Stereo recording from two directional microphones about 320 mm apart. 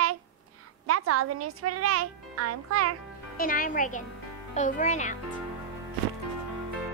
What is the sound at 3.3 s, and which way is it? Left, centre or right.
A woman's voice, left.